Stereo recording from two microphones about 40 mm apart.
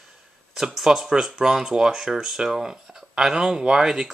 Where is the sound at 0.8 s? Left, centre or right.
Centre.